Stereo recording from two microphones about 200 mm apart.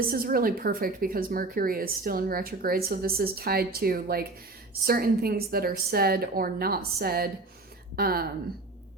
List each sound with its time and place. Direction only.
0.1 s speech: 45° right (ahead or behind)